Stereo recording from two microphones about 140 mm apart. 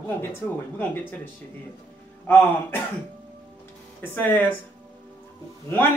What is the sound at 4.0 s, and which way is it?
Speech, 15° left (ahead or behind).